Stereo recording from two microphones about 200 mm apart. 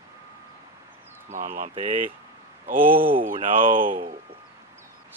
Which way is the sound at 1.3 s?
40° right (ahead or behind).